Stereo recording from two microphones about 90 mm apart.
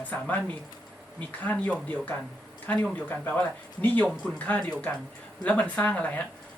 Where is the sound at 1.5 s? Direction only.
15° left (ahead or behind).